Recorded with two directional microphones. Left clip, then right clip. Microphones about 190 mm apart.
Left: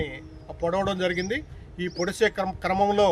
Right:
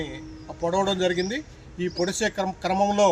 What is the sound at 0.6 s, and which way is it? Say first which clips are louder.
Speech: right 2 dB; 5° left (ahead or behind).